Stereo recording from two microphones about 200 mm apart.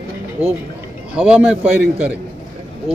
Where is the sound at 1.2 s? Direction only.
5° right (ahead or behind).